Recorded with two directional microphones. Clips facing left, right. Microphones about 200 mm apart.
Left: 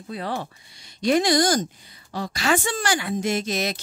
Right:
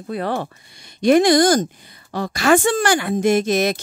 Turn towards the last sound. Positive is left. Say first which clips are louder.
# right 8 dB
turn(degrees=-50)  # may be behind; listen again after turning